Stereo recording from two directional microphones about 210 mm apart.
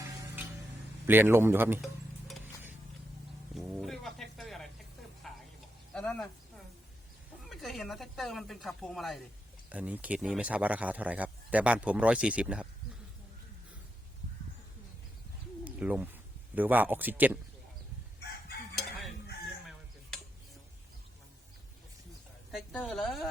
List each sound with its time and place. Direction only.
0.1 s a sound: 15° right (ahead or behind)
1.0 s speech: 10° right (ahead or behind)
2.2 s a sound: 5° right (ahead or behind)
3.5 s music: centre (ahead or behind)
5.9 s speech: 5° left (ahead or behind)
7.4 s speech: centre (ahead or behind)
15.6 s bird: 5° right (ahead or behind)
16.6 s speech: 10° right (ahead or behind)
22.5 s speech: centre (ahead or behind)